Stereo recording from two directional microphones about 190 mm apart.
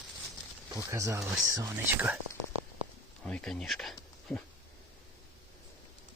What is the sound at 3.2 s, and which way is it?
Speech, 5° left (ahead or behind).